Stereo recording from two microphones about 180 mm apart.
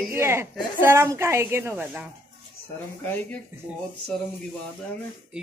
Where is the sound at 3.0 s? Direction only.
10° left (ahead or behind).